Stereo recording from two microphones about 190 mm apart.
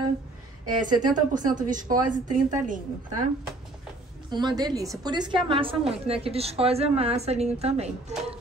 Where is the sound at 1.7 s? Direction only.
40° right (ahead or behind).